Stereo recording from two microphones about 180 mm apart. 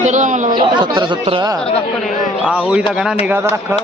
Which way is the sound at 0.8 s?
25° right (ahead or behind).